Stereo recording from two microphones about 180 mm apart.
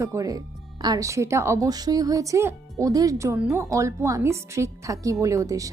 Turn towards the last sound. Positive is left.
turn(degrees=-20)  # may be behind; listen again after turning